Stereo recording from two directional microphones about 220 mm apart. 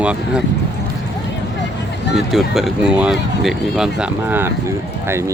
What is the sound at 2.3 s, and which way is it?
Speech, centre (ahead or behind).